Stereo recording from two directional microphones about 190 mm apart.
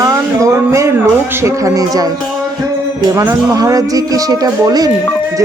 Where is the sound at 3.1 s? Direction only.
15° right (ahead or behind).